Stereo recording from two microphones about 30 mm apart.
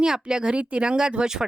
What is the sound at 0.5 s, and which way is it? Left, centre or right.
Speech, right.